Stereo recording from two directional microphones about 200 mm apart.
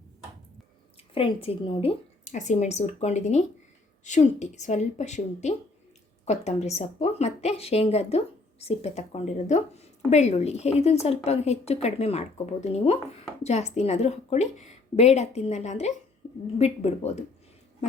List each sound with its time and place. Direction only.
1.1 s a woman's voice: 30° left (ahead or behind)